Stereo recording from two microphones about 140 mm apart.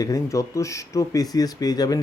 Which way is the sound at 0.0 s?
25° left (ahead or behind).